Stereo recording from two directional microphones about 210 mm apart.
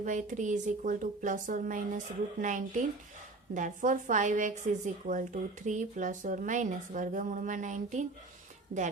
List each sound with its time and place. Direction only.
0.0 s a woman's voice: 35° right (ahead or behind)